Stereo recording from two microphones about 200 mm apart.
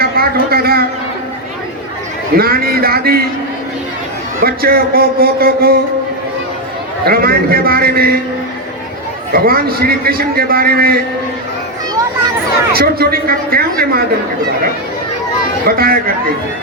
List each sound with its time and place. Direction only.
0.0 s a sound: 50° right (ahead or behind)
2.3 s a man's voice: 50° right (ahead or behind)
4.4 s a man's voice: 50° right (ahead or behind)
7.0 s a man's voice: 50° right (ahead or behind)
9.3 s a man's voice: 50° right (ahead or behind)
12.7 s a man's voice: 50° right (ahead or behind)
15.6 s a man's voice: 50° right (ahead or behind)